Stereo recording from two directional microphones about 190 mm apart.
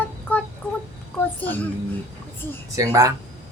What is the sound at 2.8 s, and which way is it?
Speech, 15° right (ahead or behind).